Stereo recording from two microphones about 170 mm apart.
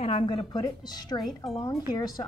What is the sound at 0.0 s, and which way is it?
Speech, 35° left (ahead or behind).